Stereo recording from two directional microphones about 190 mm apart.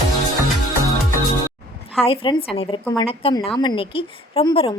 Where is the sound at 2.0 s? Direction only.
30° left (ahead or behind).